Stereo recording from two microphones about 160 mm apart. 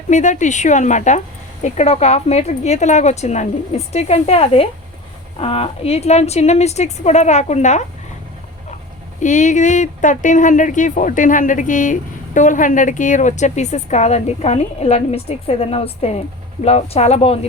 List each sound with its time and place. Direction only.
0.1 s speech: 50° left (ahead or behind)
9.2 s speech: 50° left (ahead or behind)